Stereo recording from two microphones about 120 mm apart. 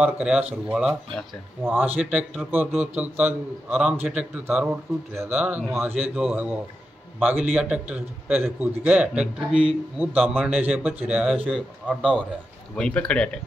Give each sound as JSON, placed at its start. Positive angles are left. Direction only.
{"t": 0.0, "sound": "a man's voice", "side_deg": -10}
{"t": 11.9, "sound": "speech", "side_deg": 5}